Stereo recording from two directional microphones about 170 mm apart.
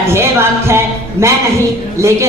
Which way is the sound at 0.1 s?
15° right (ahead or behind).